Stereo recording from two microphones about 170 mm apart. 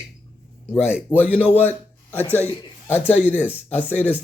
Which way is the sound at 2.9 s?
10° right (ahead or behind).